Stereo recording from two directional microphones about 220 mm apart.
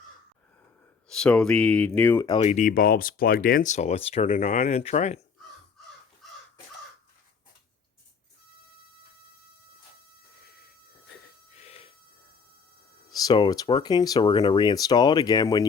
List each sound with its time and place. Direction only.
1.0 s speech: 5° left (ahead or behind); by 5.2 s 30° left (ahead or behind)
11.5 s a sound: 30° left (ahead or behind)
13.1 s speech: 15° left (ahead or behind)